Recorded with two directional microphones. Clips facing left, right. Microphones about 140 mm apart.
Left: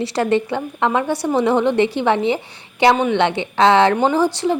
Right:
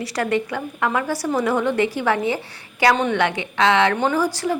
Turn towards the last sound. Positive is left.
turn(degrees=25)  # may be behind; listen again after turning